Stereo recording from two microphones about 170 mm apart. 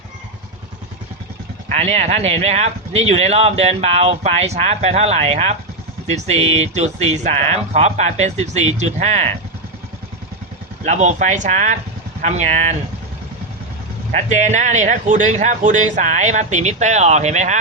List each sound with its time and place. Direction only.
1.7 s speech: 40° right (ahead or behind)
10.8 s speech: 45° right (ahead or behind)
14.2 s speech: 45° right (ahead or behind)